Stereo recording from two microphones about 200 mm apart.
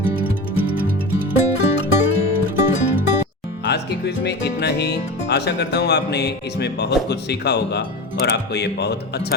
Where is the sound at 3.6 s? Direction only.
55° left (ahead or behind).